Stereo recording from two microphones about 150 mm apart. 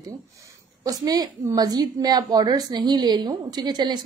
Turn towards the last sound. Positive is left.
turn(degrees=-30)  # may be behind; listen again after turning